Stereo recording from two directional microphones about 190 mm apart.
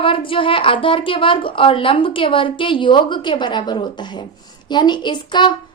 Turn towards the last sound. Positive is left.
turn(degrees=25)  # may be behind; listen again after turning